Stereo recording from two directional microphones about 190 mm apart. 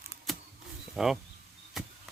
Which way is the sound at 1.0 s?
Centre (ahead or behind).